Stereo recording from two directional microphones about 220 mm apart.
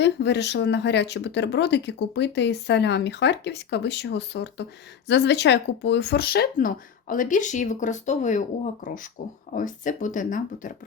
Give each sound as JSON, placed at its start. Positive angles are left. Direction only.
{"t": 0.0, "sound": "speech", "side_deg": 50}